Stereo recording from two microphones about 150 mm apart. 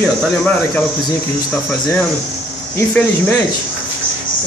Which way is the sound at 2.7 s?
20° left (ahead or behind).